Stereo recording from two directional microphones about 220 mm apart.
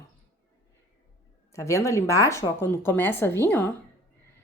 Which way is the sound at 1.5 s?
15° left (ahead or behind).